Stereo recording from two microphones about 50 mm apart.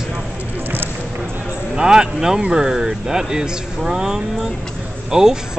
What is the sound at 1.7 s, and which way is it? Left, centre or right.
Speech, centre.